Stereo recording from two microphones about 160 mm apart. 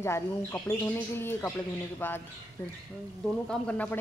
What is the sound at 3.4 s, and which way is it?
Speech, 5° left (ahead or behind).